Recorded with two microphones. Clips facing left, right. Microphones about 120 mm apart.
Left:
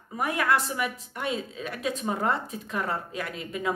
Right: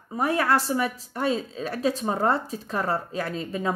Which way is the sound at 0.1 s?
30° right (ahead or behind).